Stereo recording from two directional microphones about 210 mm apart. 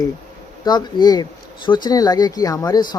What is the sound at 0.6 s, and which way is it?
Speech, 20° left (ahead or behind).